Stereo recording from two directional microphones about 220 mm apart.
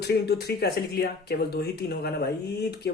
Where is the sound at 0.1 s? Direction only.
45° left (ahead or behind).